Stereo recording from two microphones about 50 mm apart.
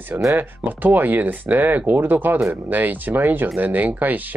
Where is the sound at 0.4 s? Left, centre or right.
Right.